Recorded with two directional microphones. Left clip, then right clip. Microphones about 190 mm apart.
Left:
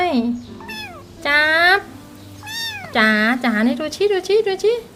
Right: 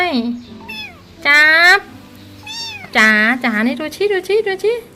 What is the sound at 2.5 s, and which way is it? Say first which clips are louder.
Cat: left 1 dB; 25° left (ahead or behind).